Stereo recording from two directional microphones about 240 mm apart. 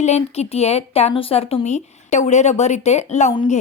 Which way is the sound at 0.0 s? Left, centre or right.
Left.